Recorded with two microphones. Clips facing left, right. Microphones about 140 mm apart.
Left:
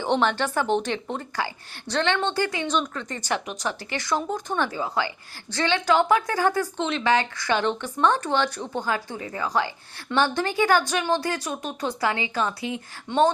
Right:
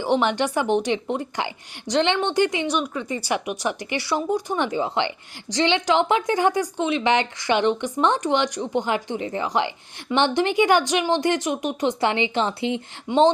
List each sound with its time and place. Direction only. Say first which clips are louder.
0.0 s a woman's voice: right 2 dB; 10° right (ahead or behind)
13.1 s a woman's voice: right 3 dB; 10° right (ahead or behind)